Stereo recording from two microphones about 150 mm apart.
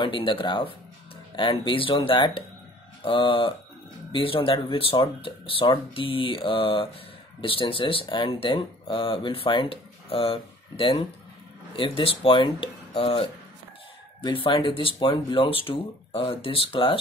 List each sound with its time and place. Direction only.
0.0 s speech: 35° left (ahead or behind)